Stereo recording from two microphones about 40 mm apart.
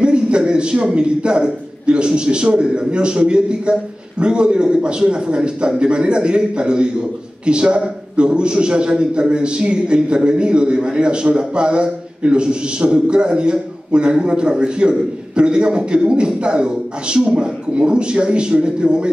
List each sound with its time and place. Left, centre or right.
0.0 s a man's voice: right